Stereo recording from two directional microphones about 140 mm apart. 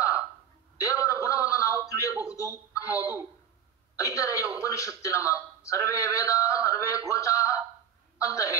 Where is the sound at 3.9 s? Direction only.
25° left (ahead or behind).